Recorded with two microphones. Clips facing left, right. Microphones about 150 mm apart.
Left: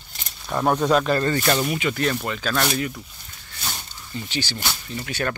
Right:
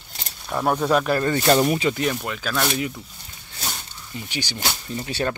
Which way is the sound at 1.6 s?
40° right (ahead or behind).